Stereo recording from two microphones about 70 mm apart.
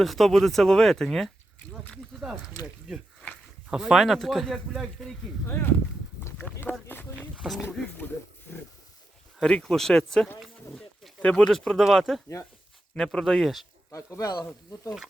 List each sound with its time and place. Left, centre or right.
0.0 s speech: centre
4.7 s speech: centre
6.4 s speech: left
7.4 s speech: centre
7.9 s speech: left
9.6 s speech: centre
13.9 s speech: left